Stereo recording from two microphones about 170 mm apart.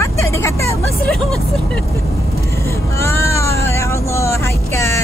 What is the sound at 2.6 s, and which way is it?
Speech, 15° left (ahead or behind).